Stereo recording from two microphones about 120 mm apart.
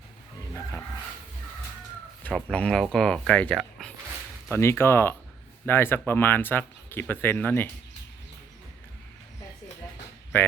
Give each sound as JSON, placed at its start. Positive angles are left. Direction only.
{"t": 2.2, "sound": "speech", "side_deg": 10}
{"t": 4.5, "sound": "speech", "side_deg": 20}